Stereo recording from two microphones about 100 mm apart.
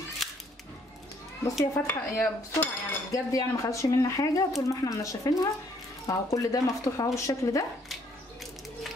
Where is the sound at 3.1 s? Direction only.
35° left (ahead or behind).